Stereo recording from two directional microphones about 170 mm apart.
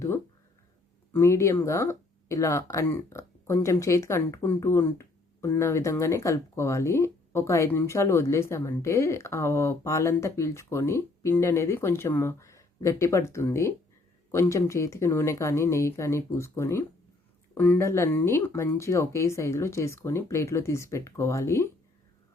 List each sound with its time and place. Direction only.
1.1 s speech: 15° left (ahead or behind)